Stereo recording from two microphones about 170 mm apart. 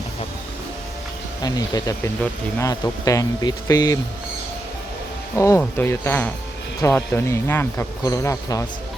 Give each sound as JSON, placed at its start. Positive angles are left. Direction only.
{"t": 1.4, "sound": "speech", "side_deg": 25}
{"t": 5.4, "sound": "speech", "side_deg": 15}